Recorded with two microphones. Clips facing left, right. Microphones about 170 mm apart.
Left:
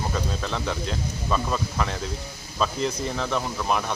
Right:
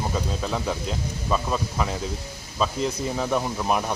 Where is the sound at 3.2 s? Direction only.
15° right (ahead or behind).